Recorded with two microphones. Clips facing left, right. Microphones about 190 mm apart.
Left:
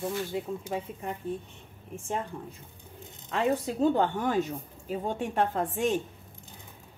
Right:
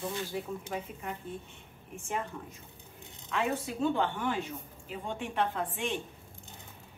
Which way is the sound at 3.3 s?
35° left (ahead or behind).